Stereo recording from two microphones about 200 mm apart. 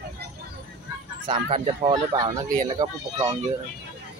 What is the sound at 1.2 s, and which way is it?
Speech, 25° right (ahead or behind).